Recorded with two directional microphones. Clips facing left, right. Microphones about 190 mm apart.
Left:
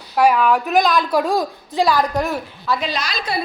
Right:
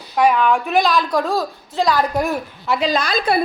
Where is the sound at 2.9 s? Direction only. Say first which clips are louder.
Right 6 dB; 50° right (ahead or behind).